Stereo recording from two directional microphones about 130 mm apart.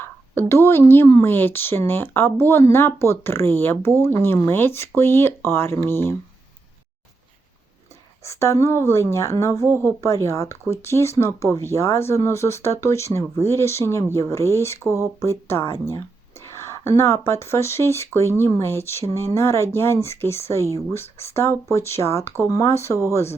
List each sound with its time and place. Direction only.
0.0 s speech: 20° left (ahead or behind)
8.2 s speech: 20° left (ahead or behind)
14.8 s speech: 20° right (ahead or behind)
15.2 s speech: 20° left (ahead or behind)